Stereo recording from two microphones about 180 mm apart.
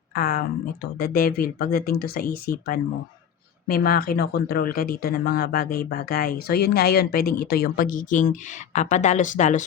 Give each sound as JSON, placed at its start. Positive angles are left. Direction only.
{"t": 0.1, "sound": "speech", "side_deg": 55}